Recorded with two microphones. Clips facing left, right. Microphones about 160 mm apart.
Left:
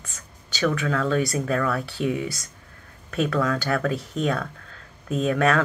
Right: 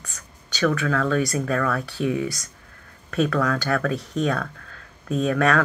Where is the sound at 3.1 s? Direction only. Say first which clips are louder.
Right 1 dB; 20° left (ahead or behind).